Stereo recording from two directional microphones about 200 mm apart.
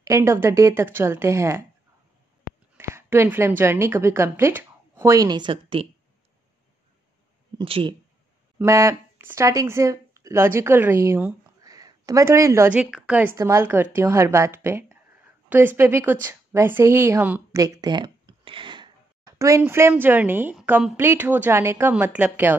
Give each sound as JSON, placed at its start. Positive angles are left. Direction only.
{"t": 0.0, "sound": "a woman's voice", "side_deg": -15}
{"t": 2.9, "sound": "a woman's voice", "side_deg": -10}
{"t": 7.5, "sound": "speech", "side_deg": -25}
{"t": 8.5, "sound": "a woman's voice", "side_deg": -15}